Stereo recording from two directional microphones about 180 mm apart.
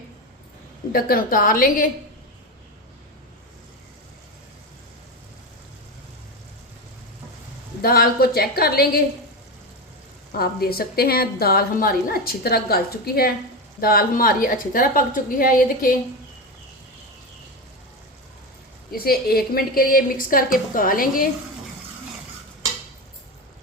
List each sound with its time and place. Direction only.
0.9 s a woman's voice: 55° left (ahead or behind)
7.8 s a woman's voice: 60° left (ahead or behind)
10.3 s a woman's voice: 60° left (ahead or behind)
18.9 s a woman's voice: 55° left (ahead or behind)